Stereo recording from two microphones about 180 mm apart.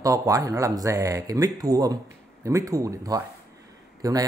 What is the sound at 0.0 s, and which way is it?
A man's voice, 20° right (ahead or behind).